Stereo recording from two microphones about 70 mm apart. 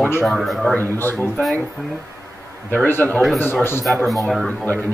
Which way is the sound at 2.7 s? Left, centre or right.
Left.